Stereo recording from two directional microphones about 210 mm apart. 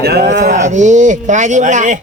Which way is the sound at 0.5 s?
35° right (ahead or behind).